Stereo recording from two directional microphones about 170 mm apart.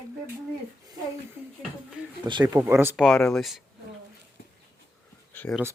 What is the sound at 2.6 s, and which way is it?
Speech, 15° right (ahead or behind).